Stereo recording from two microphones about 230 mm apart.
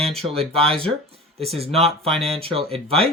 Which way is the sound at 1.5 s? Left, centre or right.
Right.